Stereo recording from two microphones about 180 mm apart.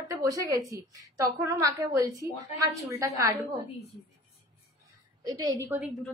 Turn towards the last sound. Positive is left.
turn(degrees=-15)  # may be behind; listen again after turning